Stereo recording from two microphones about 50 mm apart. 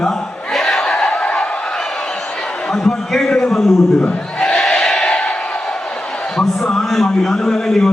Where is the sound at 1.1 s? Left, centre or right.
Left.